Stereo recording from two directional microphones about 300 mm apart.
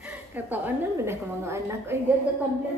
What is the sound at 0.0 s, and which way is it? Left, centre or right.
A woman's voice, centre.